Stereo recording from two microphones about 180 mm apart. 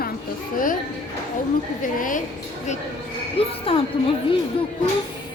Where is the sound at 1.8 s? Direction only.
50° left (ahead or behind).